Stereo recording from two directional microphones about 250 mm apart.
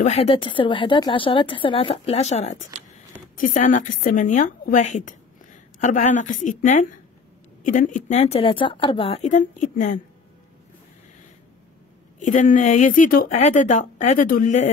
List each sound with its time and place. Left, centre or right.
0.0 s a woman's voice: left
12.2 s speech: left